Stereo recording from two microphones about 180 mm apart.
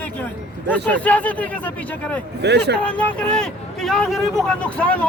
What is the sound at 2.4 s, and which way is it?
Speech, 70° right (ahead or behind).